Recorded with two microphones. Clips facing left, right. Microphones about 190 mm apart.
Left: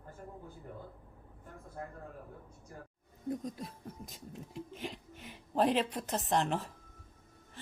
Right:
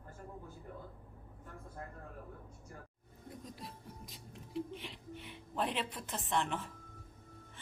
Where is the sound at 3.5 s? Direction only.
45° left (ahead or behind).